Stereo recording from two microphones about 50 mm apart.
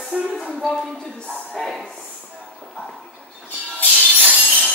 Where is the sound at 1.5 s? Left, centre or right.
Centre.